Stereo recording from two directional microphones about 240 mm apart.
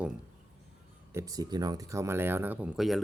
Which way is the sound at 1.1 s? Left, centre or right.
Centre.